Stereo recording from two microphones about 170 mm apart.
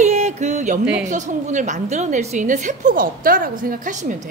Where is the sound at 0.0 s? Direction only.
40° right (ahead or behind).